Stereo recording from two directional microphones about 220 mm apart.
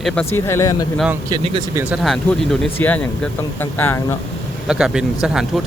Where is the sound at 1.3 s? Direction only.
20° right (ahead or behind).